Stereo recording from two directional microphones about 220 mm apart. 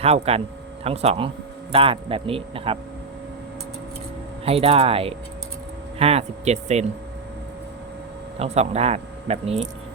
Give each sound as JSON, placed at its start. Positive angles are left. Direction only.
{"t": 0.0, "sound": "speech", "side_deg": -30}
{"t": 4.4, "sound": "speech", "side_deg": -25}
{"t": 8.4, "sound": "speech", "side_deg": -30}